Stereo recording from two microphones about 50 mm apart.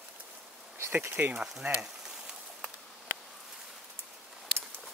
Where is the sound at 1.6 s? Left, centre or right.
Right.